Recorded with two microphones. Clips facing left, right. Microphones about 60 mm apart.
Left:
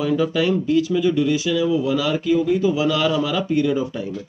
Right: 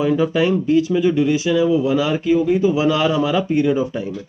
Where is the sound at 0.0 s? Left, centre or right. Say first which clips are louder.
Right 3 dB; right.